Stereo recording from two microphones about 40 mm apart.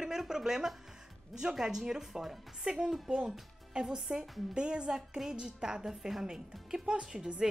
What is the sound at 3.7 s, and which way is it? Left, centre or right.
A woman's voice, right.